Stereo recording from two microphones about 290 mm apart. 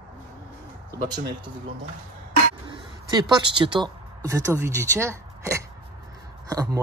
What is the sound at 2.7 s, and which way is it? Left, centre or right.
Speech, centre.